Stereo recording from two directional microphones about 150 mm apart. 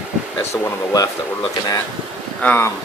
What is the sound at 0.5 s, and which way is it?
Speech, 20° left (ahead or behind).